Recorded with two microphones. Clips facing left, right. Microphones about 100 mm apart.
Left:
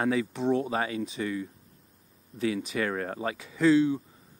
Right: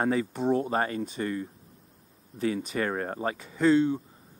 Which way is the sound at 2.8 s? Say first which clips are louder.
Right 1 dB; 15° right (ahead or behind).